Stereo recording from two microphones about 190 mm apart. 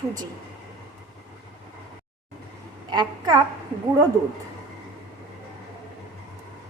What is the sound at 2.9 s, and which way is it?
Speech, 20° right (ahead or behind).